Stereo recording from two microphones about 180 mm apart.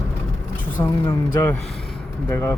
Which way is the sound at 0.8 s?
10° left (ahead or behind).